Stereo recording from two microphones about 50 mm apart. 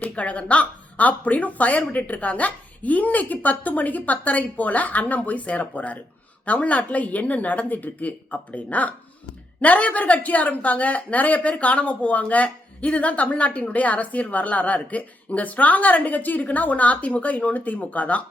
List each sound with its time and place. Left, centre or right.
0.0 s speech: left